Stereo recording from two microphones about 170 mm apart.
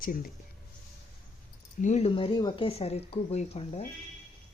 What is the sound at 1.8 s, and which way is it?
Speech, 40° left (ahead or behind).